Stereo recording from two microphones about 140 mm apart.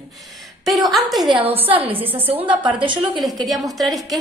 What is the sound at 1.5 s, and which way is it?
Speech, 15° right (ahead or behind).